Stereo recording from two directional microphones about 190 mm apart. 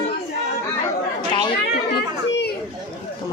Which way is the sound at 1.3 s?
25° left (ahead or behind).